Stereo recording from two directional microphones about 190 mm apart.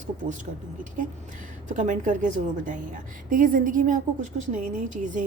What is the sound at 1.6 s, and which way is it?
A woman's voice, 40° right (ahead or behind).